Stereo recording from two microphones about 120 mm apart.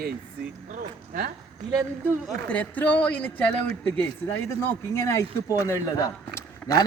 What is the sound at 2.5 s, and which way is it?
Speech, 10° left (ahead or behind).